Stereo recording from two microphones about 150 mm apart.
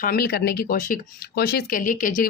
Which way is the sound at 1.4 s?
90° left.